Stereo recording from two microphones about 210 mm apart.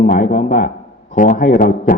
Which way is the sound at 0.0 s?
40° left (ahead or behind).